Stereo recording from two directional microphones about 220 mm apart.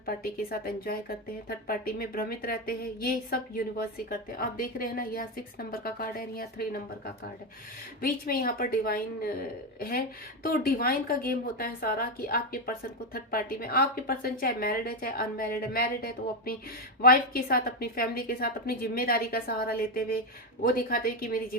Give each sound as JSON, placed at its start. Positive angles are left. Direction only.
{"t": 0.0, "sound": "a woman's voice", "side_deg": 40}